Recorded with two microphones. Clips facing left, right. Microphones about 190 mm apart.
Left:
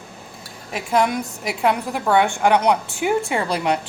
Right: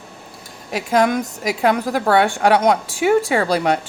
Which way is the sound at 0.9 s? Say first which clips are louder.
Right 3 dB; 45° right (ahead or behind).